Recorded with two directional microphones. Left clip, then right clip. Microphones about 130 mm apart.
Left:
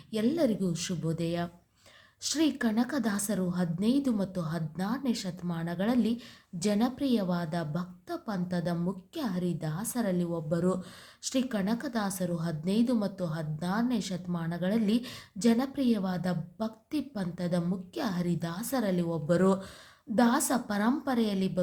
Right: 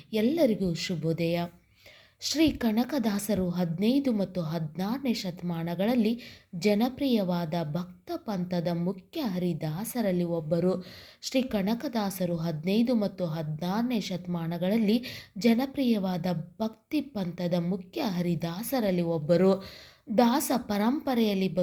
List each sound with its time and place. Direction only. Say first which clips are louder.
0.1 s a woman's voice: right 3 dB; 15° right (ahead or behind)